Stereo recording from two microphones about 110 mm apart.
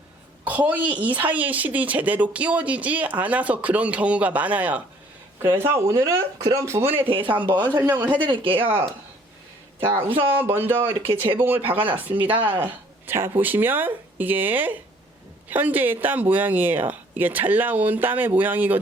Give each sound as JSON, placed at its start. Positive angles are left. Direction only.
{"t": 0.4, "sound": "a woman's voice", "side_deg": -15}
{"t": 7.1, "sound": "speech", "side_deg": -50}
{"t": 10.5, "sound": "a woman's voice", "side_deg": -20}